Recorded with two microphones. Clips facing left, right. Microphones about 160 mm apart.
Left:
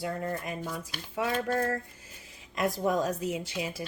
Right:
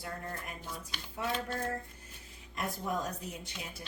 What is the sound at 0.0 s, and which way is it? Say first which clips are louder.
Speech: left 9 dB; 90° left.